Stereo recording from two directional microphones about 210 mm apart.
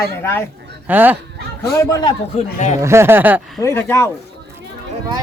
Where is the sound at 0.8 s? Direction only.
10° right (ahead or behind).